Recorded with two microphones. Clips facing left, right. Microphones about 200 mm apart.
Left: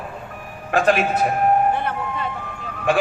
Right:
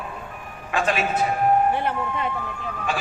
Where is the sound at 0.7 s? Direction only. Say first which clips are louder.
Left 6 dB; 55° left (ahead or behind).